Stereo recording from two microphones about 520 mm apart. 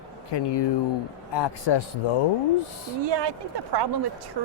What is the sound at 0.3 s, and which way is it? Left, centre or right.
A man's voice, left.